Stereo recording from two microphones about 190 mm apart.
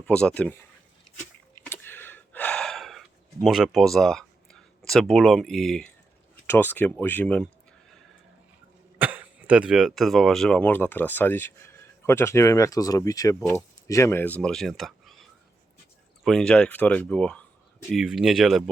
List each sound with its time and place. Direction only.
0.0 s speech: 5° left (ahead or behind)
1.5 s a sound: 10° left (ahead or behind)
3.4 s speech: centre (ahead or behind)
9.0 s speech: 10° right (ahead or behind)
16.2 s speech: 5° left (ahead or behind)